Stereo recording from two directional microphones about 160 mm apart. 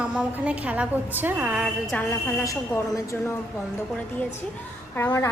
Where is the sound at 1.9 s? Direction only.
10° left (ahead or behind).